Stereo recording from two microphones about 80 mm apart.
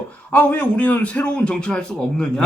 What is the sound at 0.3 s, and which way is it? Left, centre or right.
Speech, centre.